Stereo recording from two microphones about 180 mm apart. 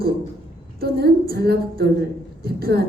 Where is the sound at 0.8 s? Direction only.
60° right (ahead or behind).